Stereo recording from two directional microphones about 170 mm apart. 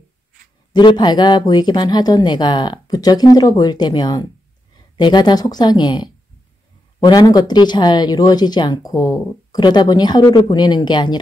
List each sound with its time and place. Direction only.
0.7 s speech: 25° left (ahead or behind)